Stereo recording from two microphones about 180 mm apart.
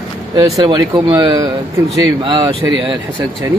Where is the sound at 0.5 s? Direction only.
25° right (ahead or behind).